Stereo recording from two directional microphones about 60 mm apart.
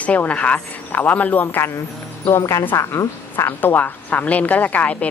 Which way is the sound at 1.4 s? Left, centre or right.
Left.